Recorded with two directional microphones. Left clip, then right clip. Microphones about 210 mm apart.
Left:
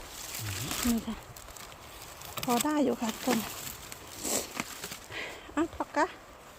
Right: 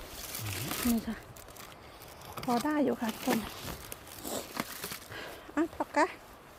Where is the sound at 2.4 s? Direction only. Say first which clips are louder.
Left 2 dB; 50° left (ahead or behind).